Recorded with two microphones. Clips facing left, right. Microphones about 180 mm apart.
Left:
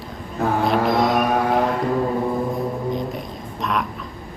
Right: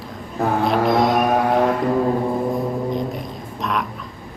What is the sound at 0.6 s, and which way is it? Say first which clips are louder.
Music: right 2 dB; centre (ahead or behind).